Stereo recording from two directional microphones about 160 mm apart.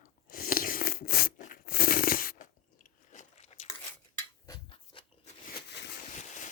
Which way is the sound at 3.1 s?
45° left (ahead or behind).